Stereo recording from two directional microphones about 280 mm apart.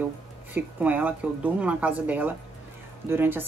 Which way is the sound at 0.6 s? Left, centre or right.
Centre.